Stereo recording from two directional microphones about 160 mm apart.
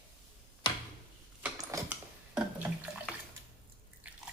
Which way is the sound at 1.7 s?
20° right (ahead or behind).